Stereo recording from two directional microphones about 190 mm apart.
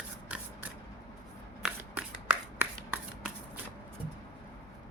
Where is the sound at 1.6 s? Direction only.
10° right (ahead or behind).